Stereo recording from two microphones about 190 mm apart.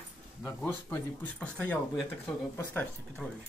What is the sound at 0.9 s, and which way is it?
Speech, 5° left (ahead or behind).